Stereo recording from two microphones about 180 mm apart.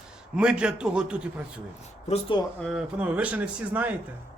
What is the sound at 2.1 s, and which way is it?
Speech, 30° left (ahead or behind).